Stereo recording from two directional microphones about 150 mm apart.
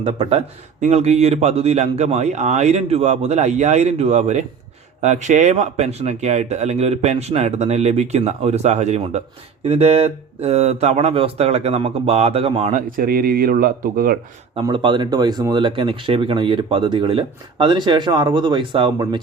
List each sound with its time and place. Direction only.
0.0 s speech: 40° right (ahead or behind)
0.8 s speech: 50° right (ahead or behind)
12.7 s speech: 90° right; by 14.2 s 70° right (ahead or behind)
14.6 s speech: 30° right (ahead or behind)